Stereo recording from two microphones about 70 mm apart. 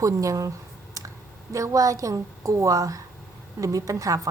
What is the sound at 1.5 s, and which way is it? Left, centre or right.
A woman's voice, right.